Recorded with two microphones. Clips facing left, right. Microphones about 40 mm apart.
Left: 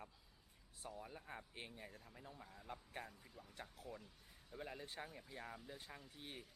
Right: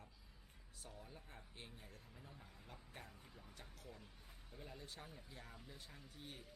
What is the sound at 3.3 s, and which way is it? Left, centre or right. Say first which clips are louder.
Speech: left 1 dB; centre.